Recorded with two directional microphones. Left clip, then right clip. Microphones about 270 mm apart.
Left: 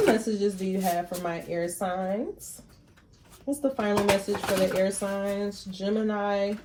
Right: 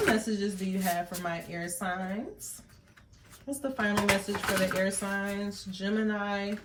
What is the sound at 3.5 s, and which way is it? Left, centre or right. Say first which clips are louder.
Speech: left 7 dB; right.